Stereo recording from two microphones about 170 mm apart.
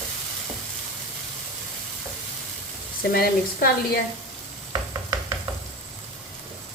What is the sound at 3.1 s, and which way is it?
Speech, 60° left (ahead or behind).